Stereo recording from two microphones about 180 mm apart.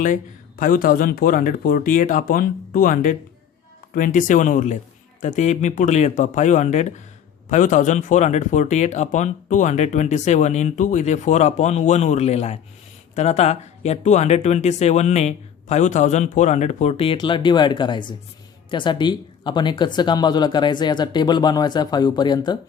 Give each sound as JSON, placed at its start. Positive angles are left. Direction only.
{"t": 0.0, "sound": "speech", "side_deg": 50}